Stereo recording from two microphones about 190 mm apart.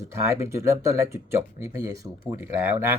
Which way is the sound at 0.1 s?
15° right (ahead or behind).